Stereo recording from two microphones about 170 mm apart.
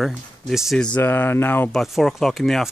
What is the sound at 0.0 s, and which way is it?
Speech, centre (ahead or behind).